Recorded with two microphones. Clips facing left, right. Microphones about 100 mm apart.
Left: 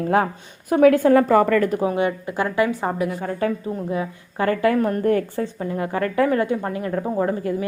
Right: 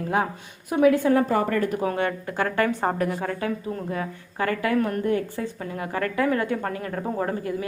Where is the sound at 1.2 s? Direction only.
90° left.